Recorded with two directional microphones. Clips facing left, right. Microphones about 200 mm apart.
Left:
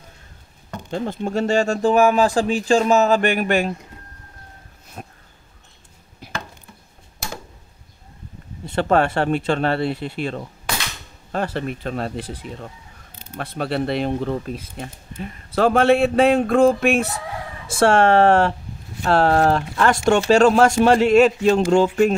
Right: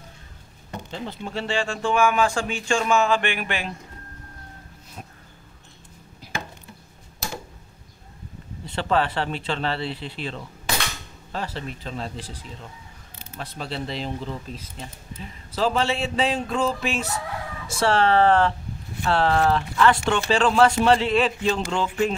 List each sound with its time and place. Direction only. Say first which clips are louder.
0.9 s speech: left 9 dB; 45° left (ahead or behind)
5.0 s a sound: left 4 dB; 55° left (ahead or behind)
8.6 s speech: left 5 dB; 50° left (ahead or behind)